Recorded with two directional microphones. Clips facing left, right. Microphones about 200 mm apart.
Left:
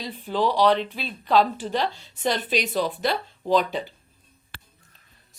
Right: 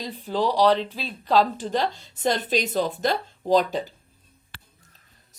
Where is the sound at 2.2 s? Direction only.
45° right (ahead or behind).